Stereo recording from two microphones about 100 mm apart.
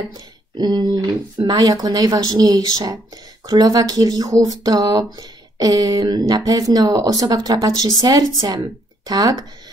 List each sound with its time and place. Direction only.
0.1 s speech: 45° right (ahead or behind)